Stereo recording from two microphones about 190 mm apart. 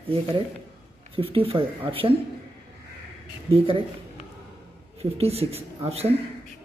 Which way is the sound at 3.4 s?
30° right (ahead or behind).